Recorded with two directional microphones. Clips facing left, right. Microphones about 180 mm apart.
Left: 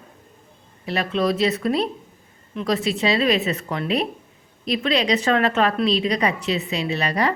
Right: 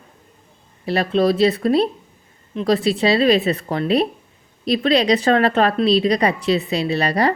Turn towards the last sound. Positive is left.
turn(degrees=-35)  # may be behind; listen again after turning